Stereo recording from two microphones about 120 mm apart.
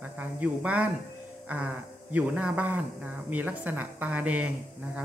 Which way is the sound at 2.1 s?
10° right (ahead or behind).